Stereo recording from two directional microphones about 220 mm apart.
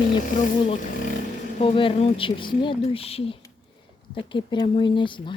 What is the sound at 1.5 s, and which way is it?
Speech, 25° left (ahead or behind).